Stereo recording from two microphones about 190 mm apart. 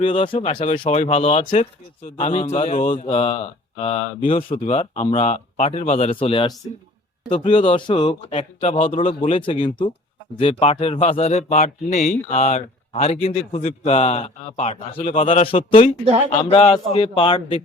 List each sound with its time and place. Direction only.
0.0 s speech: 25° left (ahead or behind)
2.0 s speech: 45° left (ahead or behind)
2.6 s mantra: 45° left (ahead or behind)
3.0 s speech: 30° left (ahead or behind)
8.3 s speech: 35° left (ahead or behind)